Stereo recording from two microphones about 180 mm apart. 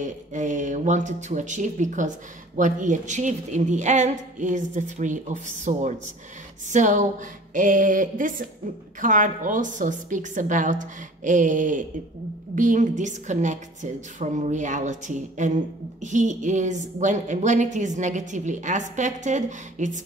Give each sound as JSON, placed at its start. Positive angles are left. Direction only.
{"t": 0.0, "sound": "a woman's voice", "side_deg": -45}